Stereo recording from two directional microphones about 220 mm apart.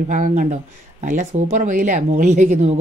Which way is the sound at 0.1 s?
35° right (ahead or behind).